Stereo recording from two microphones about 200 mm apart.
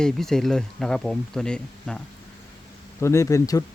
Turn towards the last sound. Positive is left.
turn(degrees=15)  # may be behind; listen again after turning